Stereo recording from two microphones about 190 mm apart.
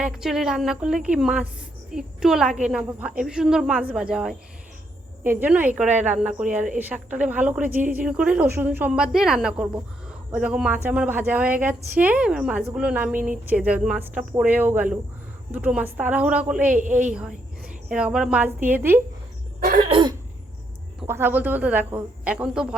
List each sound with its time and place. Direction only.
0.0 s a woman's voice: centre (ahead or behind)
16.7 s a woman's voice: 40° right (ahead or behind)
17.8 s a woman's voice: 5° right (ahead or behind)
19.5 s cough: 45° right (ahead or behind)
19.9 s cough: 25° right (ahead or behind)
21.1 s a woman's voice: 10° right (ahead or behind)